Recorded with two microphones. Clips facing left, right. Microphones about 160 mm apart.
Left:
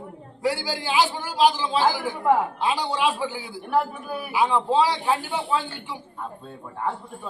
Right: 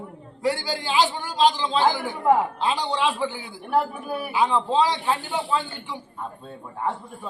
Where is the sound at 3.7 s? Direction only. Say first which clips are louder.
Right 1 dB; centre (ahead or behind).